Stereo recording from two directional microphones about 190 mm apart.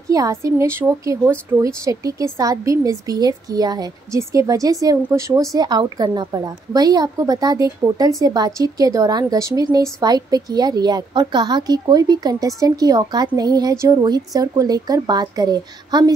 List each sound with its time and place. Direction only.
0.1 s a woman's voice: 15° right (ahead or behind)